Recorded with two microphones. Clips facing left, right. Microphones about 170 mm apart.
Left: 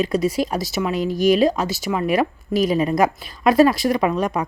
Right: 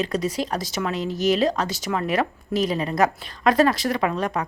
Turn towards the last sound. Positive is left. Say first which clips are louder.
# left 4 dB
turn(degrees=10)  # may be behind; listen again after turning